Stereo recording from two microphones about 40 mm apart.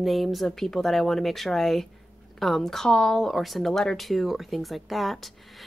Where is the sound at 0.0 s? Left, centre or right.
Centre.